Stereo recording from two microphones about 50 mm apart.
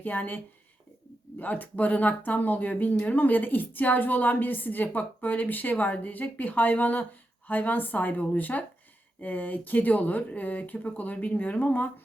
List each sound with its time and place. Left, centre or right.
0.0 s speech: left